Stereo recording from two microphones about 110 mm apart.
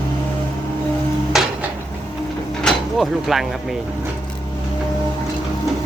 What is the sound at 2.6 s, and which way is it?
Speech, 5° left (ahead or behind).